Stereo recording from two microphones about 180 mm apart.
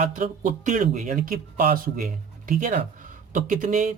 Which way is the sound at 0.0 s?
45° right (ahead or behind).